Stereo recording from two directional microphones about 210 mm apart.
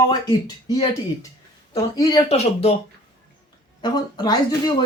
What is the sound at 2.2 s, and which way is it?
Speech, 30° left (ahead or behind).